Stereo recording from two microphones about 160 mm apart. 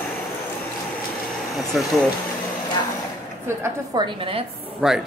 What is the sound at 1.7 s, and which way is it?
Speech, centre (ahead or behind).